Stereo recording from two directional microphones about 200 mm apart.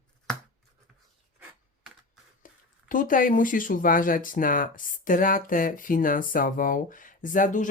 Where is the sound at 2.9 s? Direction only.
40° left (ahead or behind).